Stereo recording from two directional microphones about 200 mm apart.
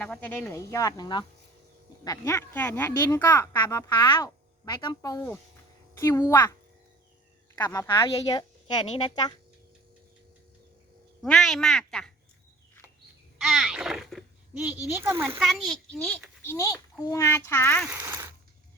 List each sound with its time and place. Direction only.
0.0 s a woman's voice: 5° left (ahead or behind)
7.5 s a woman's voice: 20° left (ahead or behind)
11.2 s speech: centre (ahead or behind)
13.4 s a child's voice: centre (ahead or behind)
15.4 s speech: centre (ahead or behind)
17.8 s a sound: 10° right (ahead or behind)